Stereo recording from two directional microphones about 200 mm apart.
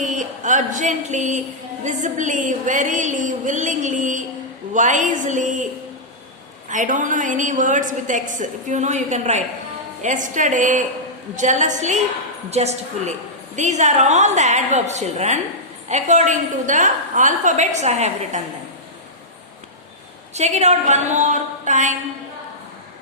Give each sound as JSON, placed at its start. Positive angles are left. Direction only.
{"t": 0.0, "sound": "a sound", "side_deg": -40}
{"t": 1.8, "sound": "a woman's voice", "side_deg": -40}
{"t": 6.7, "sound": "a woman's voice", "side_deg": -40}
{"t": 20.3, "sound": "a woman's voice", "side_deg": -35}